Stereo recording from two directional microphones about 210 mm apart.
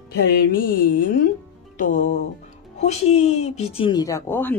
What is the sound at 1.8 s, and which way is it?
Music, 35° left (ahead or behind).